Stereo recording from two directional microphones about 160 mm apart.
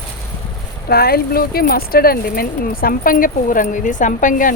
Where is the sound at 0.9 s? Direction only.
75° left (ahead or behind).